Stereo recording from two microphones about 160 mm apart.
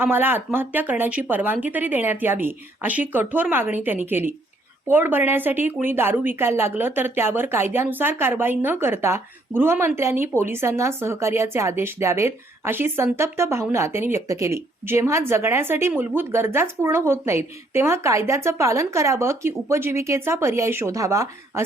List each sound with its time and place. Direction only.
0.0 s a woman's voice: 10° right (ahead or behind)